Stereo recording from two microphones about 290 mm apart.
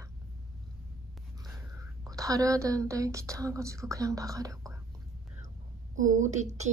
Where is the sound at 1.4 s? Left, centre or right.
Centre.